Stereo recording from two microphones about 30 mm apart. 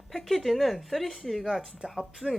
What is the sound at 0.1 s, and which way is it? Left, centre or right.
Speech, centre.